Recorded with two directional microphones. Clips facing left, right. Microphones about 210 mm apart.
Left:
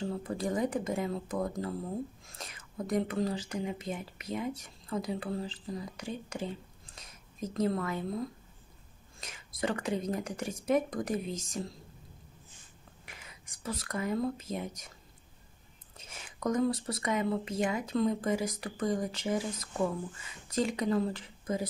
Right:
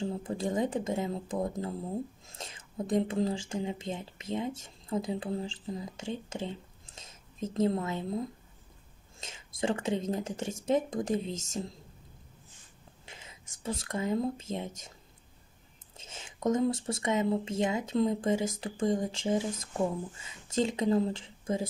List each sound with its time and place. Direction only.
0.0 s speech: 25° right (ahead or behind)
9.2 s speech: 25° right (ahead or behind)
13.0 s whispering: 25° right (ahead or behind)
13.6 s speech: 25° right (ahead or behind)
16.0 s speech: 25° right (ahead or behind)